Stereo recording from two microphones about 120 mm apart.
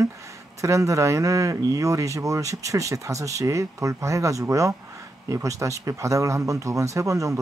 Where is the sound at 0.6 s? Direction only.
25° right (ahead or behind).